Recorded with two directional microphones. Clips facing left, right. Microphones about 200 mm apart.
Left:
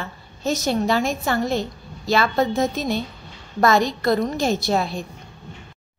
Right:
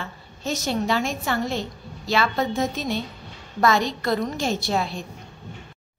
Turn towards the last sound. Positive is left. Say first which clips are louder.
# left 3 dB
turn(degrees=40)  # may be behind; listen again after turning